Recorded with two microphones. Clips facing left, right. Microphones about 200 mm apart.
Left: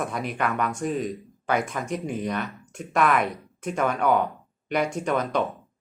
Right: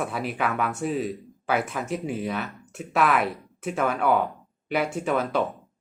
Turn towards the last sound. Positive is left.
turn(degrees=-5)  # may be behind; listen again after turning